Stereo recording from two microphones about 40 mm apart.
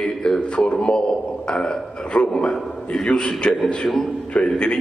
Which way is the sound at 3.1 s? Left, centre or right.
Left.